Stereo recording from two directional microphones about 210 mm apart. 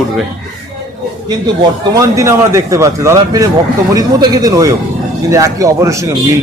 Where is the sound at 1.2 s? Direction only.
20° right (ahead or behind).